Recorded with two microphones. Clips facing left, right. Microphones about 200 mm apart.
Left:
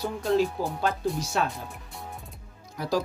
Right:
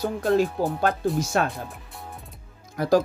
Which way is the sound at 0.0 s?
50° right (ahead or behind).